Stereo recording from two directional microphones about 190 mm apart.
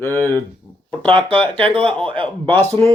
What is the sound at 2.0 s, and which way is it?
Speech, 25° right (ahead or behind).